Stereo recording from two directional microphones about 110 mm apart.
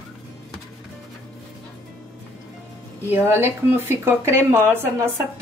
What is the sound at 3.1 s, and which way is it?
A woman's voice, 20° right (ahead or behind).